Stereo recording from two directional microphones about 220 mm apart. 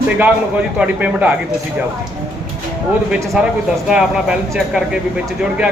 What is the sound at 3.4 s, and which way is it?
Speech, 5° right (ahead or behind).